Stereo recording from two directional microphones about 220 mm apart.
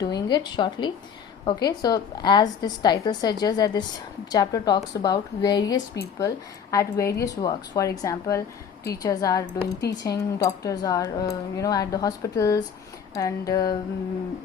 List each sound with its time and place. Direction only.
0.0 s a woman's voice: 20° left (ahead or behind)